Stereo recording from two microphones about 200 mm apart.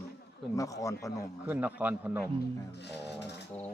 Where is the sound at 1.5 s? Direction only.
10° right (ahead or behind).